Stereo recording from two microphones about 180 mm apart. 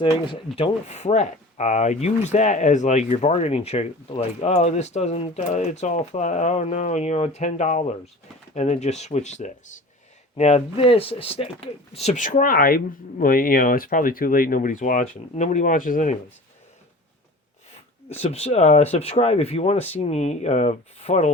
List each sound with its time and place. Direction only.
0.0 s speech: 30° left (ahead or behind); by 16.1 s 45° left (ahead or behind)
18.1 s speech: 35° left (ahead or behind)